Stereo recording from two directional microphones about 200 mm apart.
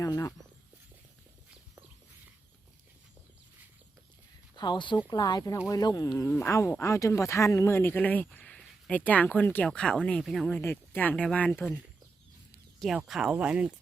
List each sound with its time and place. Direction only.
0.0 s speech: 15° left (ahead or behind)
4.5 s speech: 20° left (ahead or behind)
12.8 s speech: centre (ahead or behind)